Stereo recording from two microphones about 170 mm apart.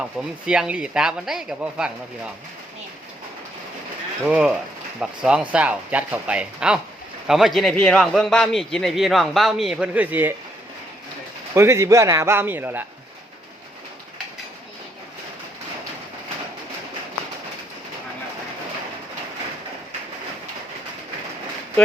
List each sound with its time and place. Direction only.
0.0 s a man's voice: 5° right (ahead or behind)
4.3 s a man's voice: 5° right (ahead or behind)
11.5 s speech: 15° right (ahead or behind)